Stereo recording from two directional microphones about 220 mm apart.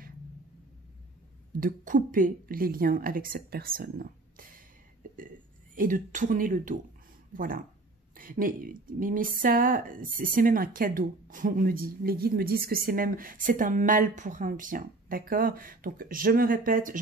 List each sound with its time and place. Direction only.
1.6 s speech: 40° right (ahead or behind)
5.8 s speech: 35° right (ahead or behind)